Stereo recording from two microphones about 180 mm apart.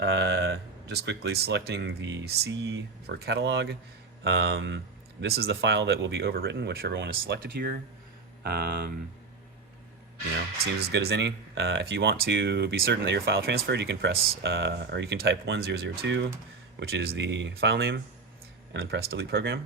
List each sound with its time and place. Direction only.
0.0 s speech: 75° right (ahead or behind)
5.2 s speech: 60° right (ahead or behind)
10.8 s speech: 65° right (ahead or behind)
16.9 s speech: 60° right (ahead or behind)